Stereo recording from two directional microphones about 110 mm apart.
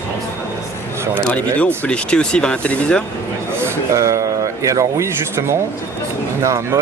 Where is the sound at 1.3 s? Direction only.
15° left (ahead or behind).